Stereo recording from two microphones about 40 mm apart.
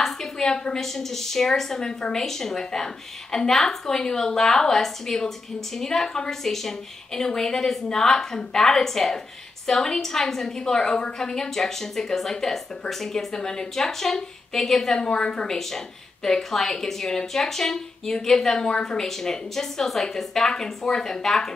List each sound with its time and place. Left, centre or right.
0.0 s a woman's voice: centre
15.0 s a woman's voice: left